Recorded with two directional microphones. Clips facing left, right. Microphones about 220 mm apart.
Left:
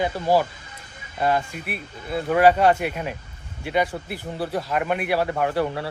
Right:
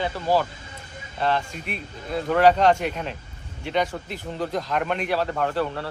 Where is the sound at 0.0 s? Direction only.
15° left (ahead or behind).